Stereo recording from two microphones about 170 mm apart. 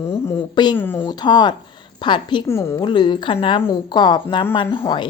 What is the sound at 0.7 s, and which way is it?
Speech, 15° left (ahead or behind).